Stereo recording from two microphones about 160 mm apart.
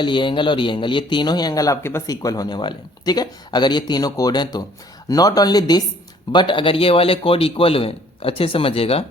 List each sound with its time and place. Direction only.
0.0 s a man's voice: 30° left (ahead or behind)